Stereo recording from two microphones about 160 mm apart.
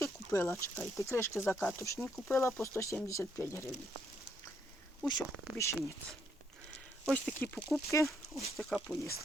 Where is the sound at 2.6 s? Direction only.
20° left (ahead or behind).